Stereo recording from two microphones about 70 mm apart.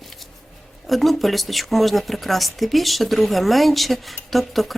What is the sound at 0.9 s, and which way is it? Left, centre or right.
Speech, centre.